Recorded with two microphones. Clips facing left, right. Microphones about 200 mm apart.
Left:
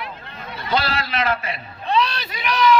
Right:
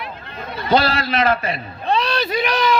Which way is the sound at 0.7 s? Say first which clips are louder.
Right 6 dB; 40° right (ahead or behind).